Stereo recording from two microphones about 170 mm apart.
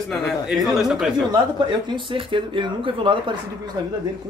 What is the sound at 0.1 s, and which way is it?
Speech, centre (ahead or behind).